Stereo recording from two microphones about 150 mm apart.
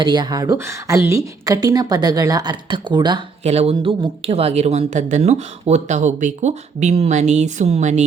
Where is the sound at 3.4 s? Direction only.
45° right (ahead or behind).